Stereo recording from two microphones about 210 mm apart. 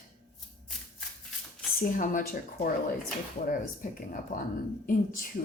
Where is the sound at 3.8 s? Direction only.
40° left (ahead or behind).